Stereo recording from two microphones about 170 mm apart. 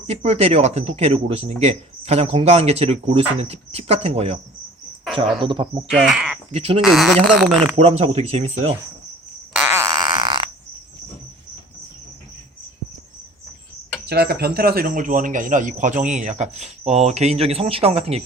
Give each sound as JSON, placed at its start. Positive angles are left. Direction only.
{"t": 0.1, "sound": "a man's voice", "side_deg": -35}
{"t": 5.4, "sound": "speech", "side_deg": -30}
{"t": 5.9, "sound": "speech", "side_deg": 0}
{"t": 6.5, "sound": "a man's voice", "side_deg": -35}
{"t": 6.8, "sound": "speech", "side_deg": 0}
{"t": 7.8, "sound": "a man's voice", "side_deg": -35}
{"t": 9.6, "sound": "a sound", "side_deg": -15}
{"t": 14.1, "sound": "a man's voice", "side_deg": -70}